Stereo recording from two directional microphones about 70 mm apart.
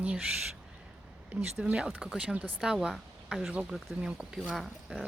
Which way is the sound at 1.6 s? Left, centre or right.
Centre.